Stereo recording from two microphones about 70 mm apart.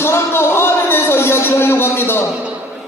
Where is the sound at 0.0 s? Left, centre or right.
Left.